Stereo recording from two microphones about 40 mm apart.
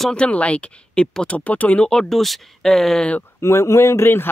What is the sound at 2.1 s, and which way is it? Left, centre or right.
Speech, centre.